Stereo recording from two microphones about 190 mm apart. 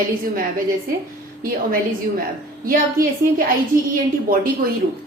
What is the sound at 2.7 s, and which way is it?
Speech, 50° right (ahead or behind).